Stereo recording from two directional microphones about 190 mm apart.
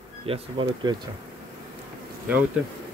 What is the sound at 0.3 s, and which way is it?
Speech, 25° right (ahead or behind).